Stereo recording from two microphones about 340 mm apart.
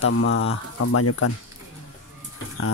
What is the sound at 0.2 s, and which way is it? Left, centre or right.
Speech, left.